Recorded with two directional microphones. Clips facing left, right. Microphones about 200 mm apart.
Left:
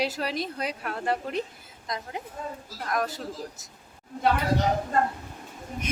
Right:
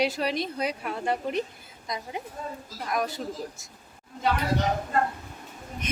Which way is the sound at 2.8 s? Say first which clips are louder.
Even; centre (ahead or behind).